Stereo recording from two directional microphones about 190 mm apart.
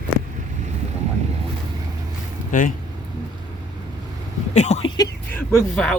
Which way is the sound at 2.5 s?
45° left (ahead or behind).